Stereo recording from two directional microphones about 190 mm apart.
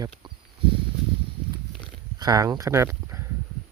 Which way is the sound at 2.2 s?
20° right (ahead or behind).